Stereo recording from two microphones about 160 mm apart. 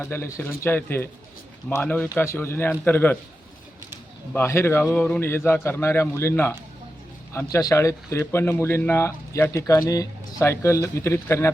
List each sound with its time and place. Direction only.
0.0 s speech: 15° left (ahead or behind)
4.3 s speech: 15° left (ahead or behind)